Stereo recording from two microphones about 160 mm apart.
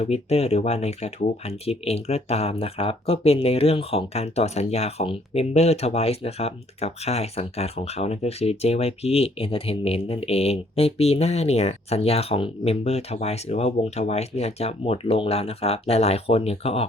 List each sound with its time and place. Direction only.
0.0 s speech: 40° left (ahead or behind)